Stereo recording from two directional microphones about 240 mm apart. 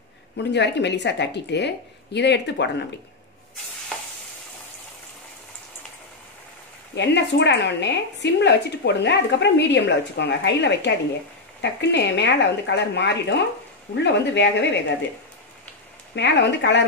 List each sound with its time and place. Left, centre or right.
0.4 s a woman's voice: left
7.0 s a woman's voice: left
16.2 s a woman's voice: left